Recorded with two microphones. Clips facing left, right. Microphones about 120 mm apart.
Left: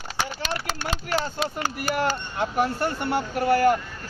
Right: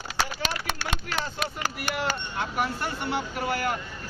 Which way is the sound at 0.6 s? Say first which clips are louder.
Left 3 dB; 35° left (ahead or behind).